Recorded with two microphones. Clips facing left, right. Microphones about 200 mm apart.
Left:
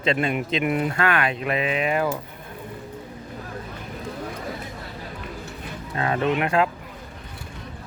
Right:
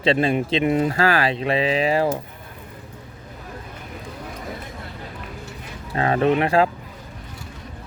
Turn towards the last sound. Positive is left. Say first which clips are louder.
# right 4 dB
turn(degrees=-30)  # may be behind; listen again after turning